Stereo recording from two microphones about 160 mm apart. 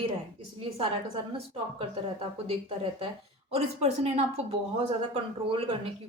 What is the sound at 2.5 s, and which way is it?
A woman's voice, 35° right (ahead or behind).